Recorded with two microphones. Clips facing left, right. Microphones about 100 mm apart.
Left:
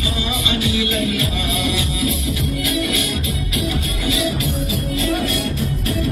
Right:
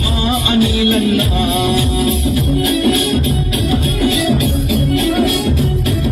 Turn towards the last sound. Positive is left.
turn(degrees=-65)  # may be behind; listen again after turning